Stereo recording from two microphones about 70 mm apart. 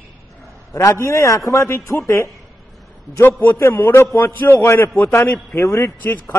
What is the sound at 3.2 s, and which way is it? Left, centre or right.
A man's voice, left.